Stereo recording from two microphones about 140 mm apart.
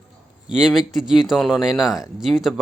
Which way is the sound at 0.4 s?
5° right (ahead or behind).